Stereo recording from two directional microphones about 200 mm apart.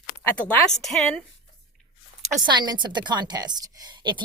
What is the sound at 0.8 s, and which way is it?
Speech, centre (ahead or behind).